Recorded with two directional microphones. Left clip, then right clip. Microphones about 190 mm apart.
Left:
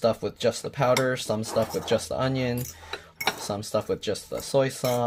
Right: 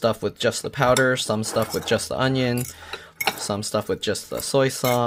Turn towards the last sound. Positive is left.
turn(degrees=-30)  # may be behind; listen again after turning